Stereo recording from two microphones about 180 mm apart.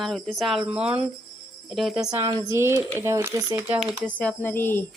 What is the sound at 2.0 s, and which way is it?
Speech, 20° right (ahead or behind).